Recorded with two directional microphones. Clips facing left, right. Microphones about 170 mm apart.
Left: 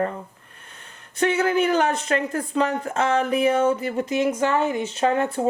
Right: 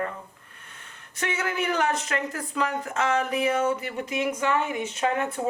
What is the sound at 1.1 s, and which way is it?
Speech, 30° left (ahead or behind).